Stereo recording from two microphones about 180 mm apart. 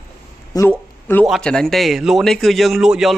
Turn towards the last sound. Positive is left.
turn(degrees=0)  # may be behind; listen again after turning